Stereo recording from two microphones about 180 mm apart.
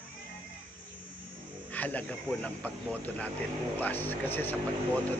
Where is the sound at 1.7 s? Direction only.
10° left (ahead or behind).